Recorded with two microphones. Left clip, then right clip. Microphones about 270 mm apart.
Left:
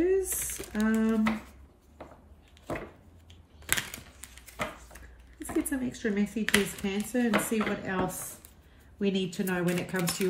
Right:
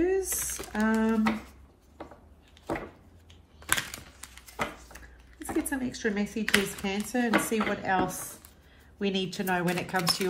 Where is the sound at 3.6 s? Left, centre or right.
Centre.